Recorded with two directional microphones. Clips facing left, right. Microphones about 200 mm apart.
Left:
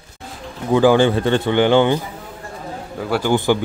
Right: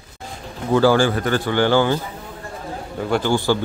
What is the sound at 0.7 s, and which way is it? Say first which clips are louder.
A man's voice: left 2 dB; 15° left (ahead or behind).